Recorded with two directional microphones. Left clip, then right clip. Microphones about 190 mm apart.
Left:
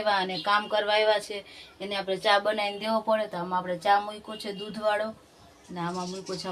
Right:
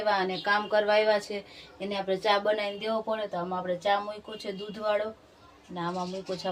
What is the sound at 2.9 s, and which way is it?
Speech, 15° left (ahead or behind).